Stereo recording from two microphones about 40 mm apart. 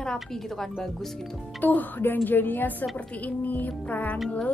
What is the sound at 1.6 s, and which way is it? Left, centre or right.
Speech, left.